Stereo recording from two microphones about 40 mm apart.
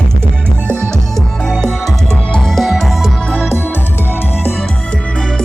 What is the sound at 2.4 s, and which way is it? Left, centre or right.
Music, centre.